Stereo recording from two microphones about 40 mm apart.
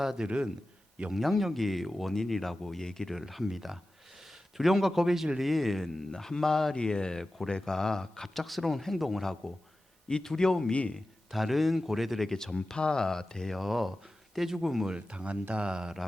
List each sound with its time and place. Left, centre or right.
0.0 s speech: centre
0.3 s speech: right
1.1 s a man's voice: centre
3.2 s a man's voice: centre
10.1 s a man's voice: centre
10.7 s speech: left
10.9 s speech: centre
12.5 s a man's voice: left
13.6 s speech: centre
14.9 s speech: right